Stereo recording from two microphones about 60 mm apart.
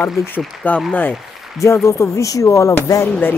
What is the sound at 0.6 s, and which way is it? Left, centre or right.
Speech, left.